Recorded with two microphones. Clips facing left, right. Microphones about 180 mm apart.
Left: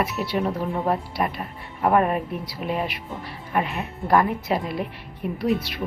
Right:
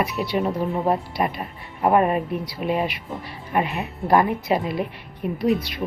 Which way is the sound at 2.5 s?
Centre (ahead or behind).